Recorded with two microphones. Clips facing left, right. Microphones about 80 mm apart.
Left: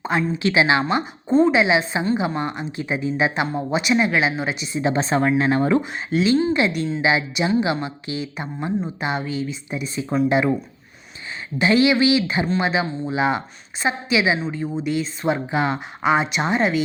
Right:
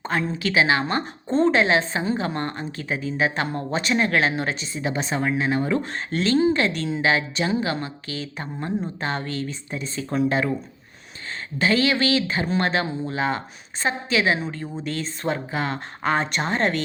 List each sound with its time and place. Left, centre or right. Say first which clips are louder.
0.3 s speech: left 2 dB; left
0.9 s a woman's voice: left 4 dB; centre
4.8 s speech: left 6 dB; left
5.8 s a woman's voice: left 4 dB; centre
11.6 s a woman's voice: left 4 dB; centre
15.3 s speech: left 5 dB; centre
16.1 s a woman's voice: left 2 dB; centre